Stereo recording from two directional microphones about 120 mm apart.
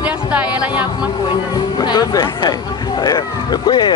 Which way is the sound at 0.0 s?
10° right (ahead or behind).